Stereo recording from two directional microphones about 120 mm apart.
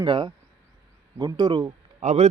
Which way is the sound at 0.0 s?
40° right (ahead or behind).